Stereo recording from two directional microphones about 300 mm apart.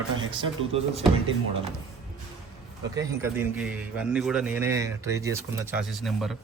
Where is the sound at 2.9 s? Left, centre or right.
Centre.